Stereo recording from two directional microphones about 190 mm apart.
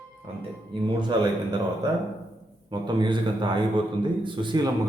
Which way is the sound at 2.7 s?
25° right (ahead or behind).